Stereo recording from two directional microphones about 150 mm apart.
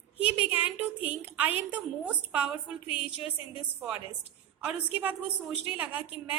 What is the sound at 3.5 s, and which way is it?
A woman's voice, 5° right (ahead or behind).